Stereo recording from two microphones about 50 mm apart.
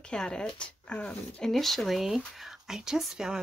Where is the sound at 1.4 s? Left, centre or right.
Centre.